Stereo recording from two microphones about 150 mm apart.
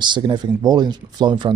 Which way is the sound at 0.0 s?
30° right (ahead or behind).